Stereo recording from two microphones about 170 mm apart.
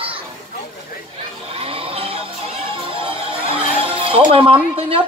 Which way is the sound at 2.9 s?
30° right (ahead or behind).